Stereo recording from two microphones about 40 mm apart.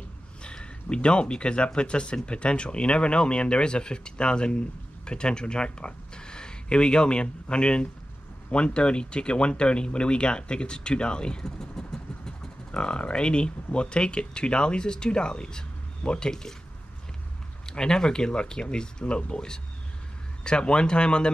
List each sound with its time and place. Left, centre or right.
0.4 s speech: left
17.6 s speech: centre